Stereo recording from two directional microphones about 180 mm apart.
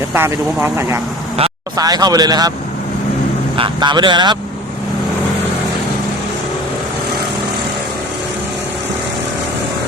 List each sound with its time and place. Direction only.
0.1 s speech: 15° right (ahead or behind)
3.6 s speech: 25° right (ahead or behind)